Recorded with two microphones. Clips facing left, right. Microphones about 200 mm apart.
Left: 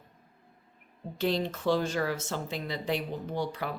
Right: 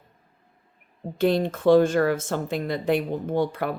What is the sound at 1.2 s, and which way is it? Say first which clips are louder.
Speech: right 8 dB; 50° right (ahead or behind).